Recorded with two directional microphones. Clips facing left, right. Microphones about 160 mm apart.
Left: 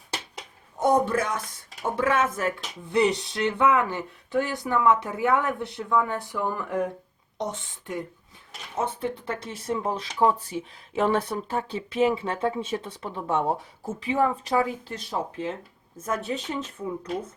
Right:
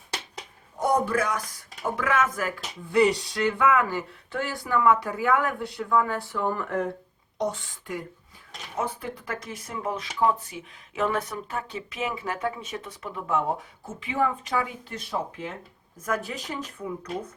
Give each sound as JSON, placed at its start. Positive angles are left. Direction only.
{"t": 0.8, "sound": "a man's voice", "side_deg": 25}
{"t": 16.0, "sound": "speech", "side_deg": 25}